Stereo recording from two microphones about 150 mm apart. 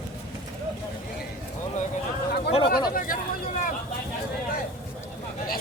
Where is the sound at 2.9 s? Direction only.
70° left (ahead or behind).